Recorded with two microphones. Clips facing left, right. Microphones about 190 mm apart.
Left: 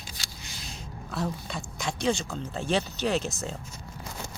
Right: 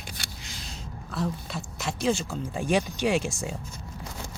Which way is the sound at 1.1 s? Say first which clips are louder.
Right 1 dB; centre (ahead or behind).